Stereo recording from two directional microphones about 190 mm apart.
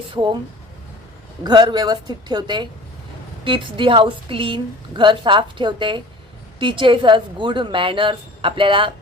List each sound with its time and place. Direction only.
0.1 s a woman's voice: 25° right (ahead or behind)
1.5 s a woman's voice: 20° right (ahead or behind)